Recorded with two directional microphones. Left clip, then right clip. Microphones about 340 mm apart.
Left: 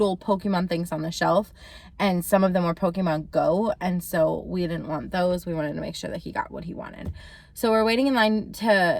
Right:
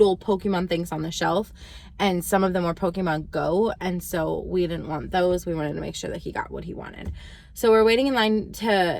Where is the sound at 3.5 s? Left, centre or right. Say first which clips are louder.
Right 2 dB; centre.